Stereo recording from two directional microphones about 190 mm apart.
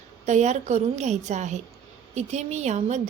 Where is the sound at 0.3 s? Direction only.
40° right (ahead or behind).